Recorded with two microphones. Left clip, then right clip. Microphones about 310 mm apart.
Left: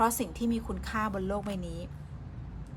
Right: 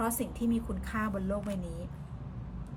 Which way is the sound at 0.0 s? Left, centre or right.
Centre.